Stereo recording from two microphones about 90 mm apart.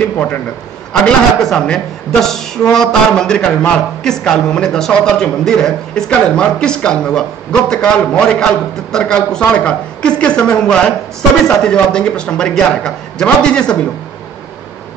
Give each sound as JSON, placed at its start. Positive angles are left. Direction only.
{"t": 0.0, "sound": "speech", "side_deg": 15}